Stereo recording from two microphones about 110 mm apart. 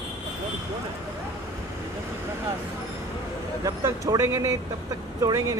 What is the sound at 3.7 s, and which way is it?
Speech, 30° right (ahead or behind).